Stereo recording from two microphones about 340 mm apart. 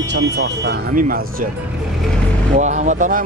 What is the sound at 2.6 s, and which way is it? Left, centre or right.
Speech, right.